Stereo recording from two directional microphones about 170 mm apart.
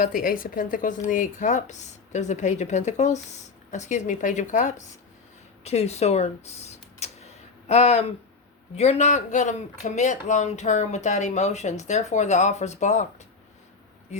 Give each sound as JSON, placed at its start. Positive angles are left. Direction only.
{"t": 0.0, "sound": "speech", "side_deg": 55}